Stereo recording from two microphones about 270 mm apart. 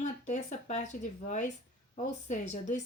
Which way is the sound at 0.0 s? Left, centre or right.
Left.